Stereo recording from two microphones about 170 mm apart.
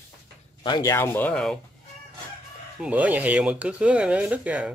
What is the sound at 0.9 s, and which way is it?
Speech, 15° left (ahead or behind).